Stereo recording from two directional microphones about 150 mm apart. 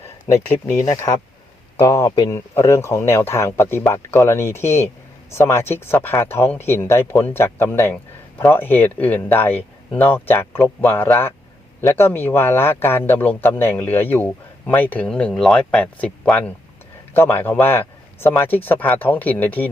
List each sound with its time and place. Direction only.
0.3 s a man's voice: 20° left (ahead or behind)